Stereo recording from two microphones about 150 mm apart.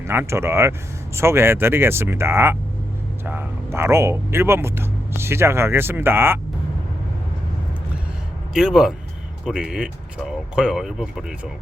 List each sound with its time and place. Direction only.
0.0 s speech: 15° right (ahead or behind)
8.5 s speech: 5° right (ahead or behind)